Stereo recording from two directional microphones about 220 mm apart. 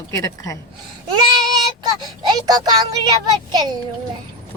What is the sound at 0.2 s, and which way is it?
Speech, 15° left (ahead or behind).